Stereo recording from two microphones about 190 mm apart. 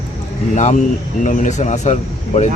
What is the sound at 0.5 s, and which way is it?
A man's voice, 40° left (ahead or behind).